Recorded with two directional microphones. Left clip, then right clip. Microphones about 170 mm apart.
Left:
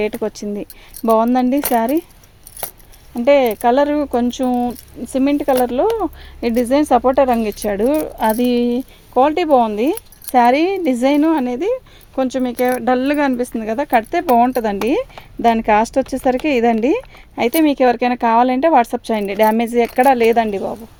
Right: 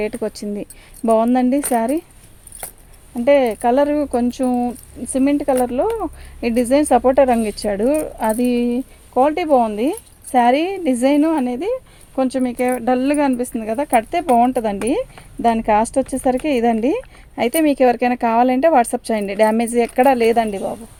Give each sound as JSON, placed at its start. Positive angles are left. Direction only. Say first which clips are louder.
{"t": 0.0, "sound": "speech", "louder": "left 2 dB", "side_deg": 35}
{"t": 1.6, "sound": "speech", "louder": "left 2 dB", "side_deg": 45}
{"t": 3.2, "sound": "speech", "louder": "left 1 dB", "side_deg": 40}
{"t": 5.5, "sound": "speech", "louder": "left 3 dB", "side_deg": 50}
{"t": 6.4, "sound": "speech", "louder": "left 1 dB", "side_deg": 35}